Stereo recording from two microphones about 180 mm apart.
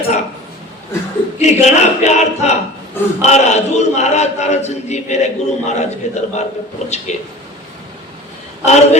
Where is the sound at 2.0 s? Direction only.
40° left (ahead or behind).